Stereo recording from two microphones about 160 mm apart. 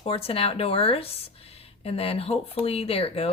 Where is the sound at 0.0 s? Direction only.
35° left (ahead or behind).